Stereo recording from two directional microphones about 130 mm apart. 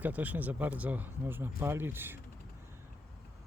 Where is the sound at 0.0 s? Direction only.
10° right (ahead or behind).